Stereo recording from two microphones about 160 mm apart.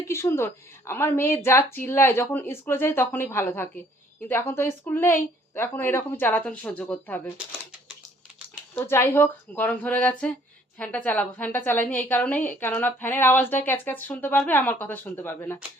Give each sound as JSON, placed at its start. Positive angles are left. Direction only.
{"t": 0.1, "sound": "a woman's voice", "side_deg": 15}
{"t": 8.7, "sound": "a woman's voice", "side_deg": 15}